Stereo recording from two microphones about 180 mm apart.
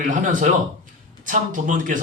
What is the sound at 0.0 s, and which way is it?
Speech, 45° right (ahead or behind).